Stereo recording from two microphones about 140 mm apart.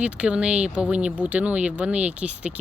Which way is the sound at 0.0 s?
5° right (ahead or behind).